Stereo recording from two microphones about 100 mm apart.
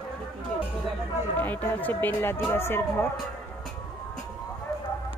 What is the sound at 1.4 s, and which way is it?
Speech, 20° left (ahead or behind).